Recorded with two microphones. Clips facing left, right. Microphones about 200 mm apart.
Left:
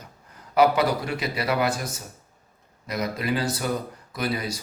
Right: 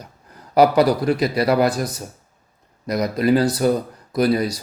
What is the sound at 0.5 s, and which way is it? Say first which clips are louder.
Speech: right 5 dB; 40° right (ahead or behind).